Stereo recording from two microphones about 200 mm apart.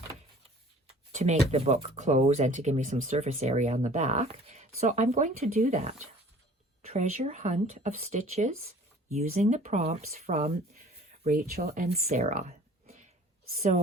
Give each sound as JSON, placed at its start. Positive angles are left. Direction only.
{"t": 1.1, "sound": "speech", "side_deg": -35}
{"t": 11.3, "sound": "speech", "side_deg": -50}
{"t": 12.2, "sound": "a sound", "side_deg": -35}
{"t": 13.6, "sound": "speech", "side_deg": -35}